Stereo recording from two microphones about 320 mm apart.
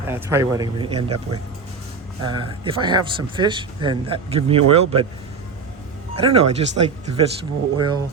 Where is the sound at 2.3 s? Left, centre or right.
Centre.